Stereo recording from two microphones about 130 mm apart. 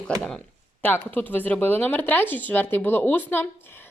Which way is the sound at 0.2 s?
5° left (ahead or behind).